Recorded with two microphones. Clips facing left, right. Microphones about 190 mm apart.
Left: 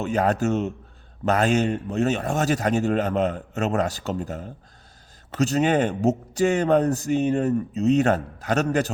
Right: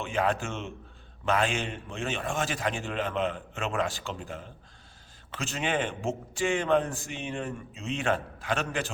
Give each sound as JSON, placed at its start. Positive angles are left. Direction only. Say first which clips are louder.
{"t": 0.0, "sound": "a man's voice", "louder": "left 7 dB", "side_deg": 40}